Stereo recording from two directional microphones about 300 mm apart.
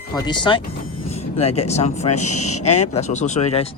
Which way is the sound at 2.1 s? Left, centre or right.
Left.